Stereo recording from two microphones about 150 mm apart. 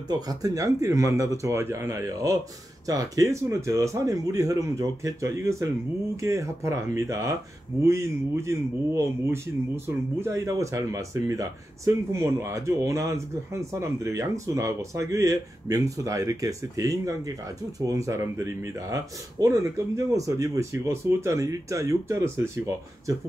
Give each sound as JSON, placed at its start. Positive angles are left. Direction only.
{"t": 0.1, "sound": "speech", "side_deg": -25}